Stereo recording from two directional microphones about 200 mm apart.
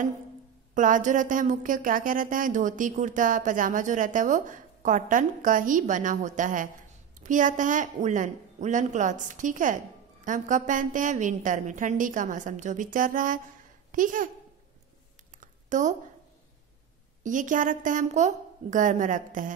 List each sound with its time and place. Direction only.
0.7 s a child's voice: 40° right (ahead or behind)
15.4 s a sound: 40° right (ahead or behind)
17.2 s speech: 40° right (ahead or behind)